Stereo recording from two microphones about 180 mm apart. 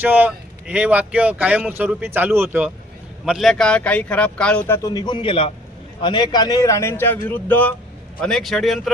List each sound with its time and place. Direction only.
0.0 s a man's voice: 10° right (ahead or behind)